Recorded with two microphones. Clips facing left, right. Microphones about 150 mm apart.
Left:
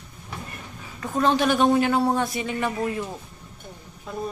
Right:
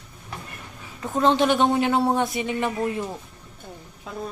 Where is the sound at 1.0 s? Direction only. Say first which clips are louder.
Right 1 dB; 20° right (ahead or behind).